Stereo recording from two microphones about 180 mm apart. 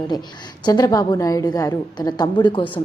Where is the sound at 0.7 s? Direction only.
20° left (ahead or behind).